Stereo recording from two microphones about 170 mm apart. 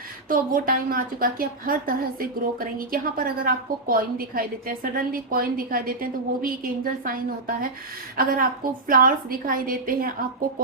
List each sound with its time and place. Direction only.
0.3 s a woman's voice: 55° right (ahead or behind)